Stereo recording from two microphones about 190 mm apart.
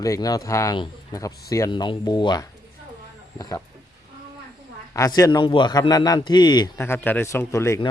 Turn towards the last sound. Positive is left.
turn(degrees=15)  # may be behind; listen again after turning